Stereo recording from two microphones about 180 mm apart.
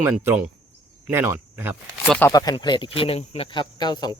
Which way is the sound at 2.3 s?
20° left (ahead or behind).